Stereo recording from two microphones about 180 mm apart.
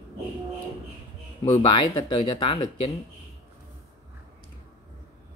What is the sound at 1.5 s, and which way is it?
Speech, 25° left (ahead or behind).